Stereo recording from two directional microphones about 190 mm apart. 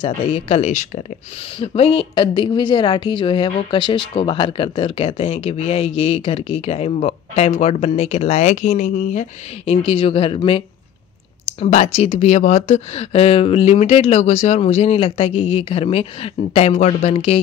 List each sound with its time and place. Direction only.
0.0 s a woman's voice: 30° left (ahead or behind)
11.6 s a woman's voice: 35° left (ahead or behind)